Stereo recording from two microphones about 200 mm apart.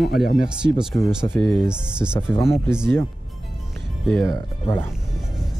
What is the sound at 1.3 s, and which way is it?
Speech, 10° left (ahead or behind).